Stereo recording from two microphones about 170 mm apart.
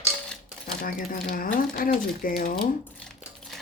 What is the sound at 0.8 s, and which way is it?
Speech, 55° left (ahead or behind).